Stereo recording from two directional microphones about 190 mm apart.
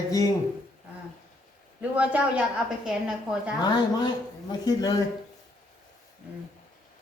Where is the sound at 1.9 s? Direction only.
5° right (ahead or behind).